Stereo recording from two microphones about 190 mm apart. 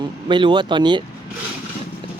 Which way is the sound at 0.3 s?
25° right (ahead or behind).